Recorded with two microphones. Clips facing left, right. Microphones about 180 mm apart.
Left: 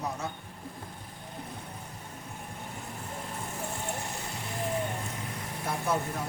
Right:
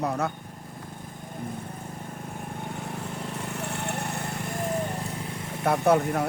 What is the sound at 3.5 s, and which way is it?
Lawn mower, 70° right (ahead or behind).